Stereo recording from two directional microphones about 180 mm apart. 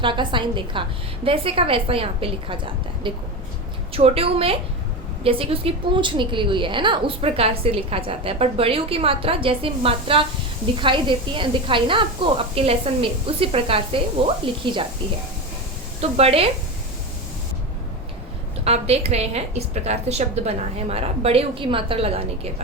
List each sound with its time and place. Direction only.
0.0 s a woman's voice: 25° right (ahead or behind)
3.9 s a woman's voice: 35° right (ahead or behind)
16.0 s a woman's voice: 35° right (ahead or behind)
18.6 s a woman's voice: 35° right (ahead or behind)